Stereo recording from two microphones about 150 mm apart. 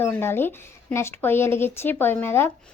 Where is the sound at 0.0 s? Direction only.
15° left (ahead or behind).